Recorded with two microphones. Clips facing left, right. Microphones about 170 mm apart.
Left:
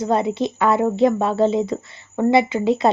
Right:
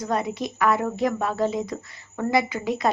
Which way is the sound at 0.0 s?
25° left (ahead or behind).